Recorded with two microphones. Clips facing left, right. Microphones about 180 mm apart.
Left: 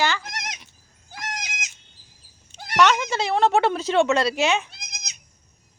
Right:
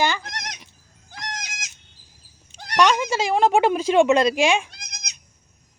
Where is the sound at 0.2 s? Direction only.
5° left (ahead or behind).